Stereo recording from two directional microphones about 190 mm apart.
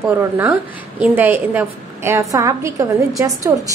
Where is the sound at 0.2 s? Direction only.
10° right (ahead or behind).